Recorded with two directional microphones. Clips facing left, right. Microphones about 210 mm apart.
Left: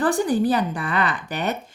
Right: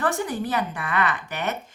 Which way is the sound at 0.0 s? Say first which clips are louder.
Left 6 dB; 30° left (ahead or behind).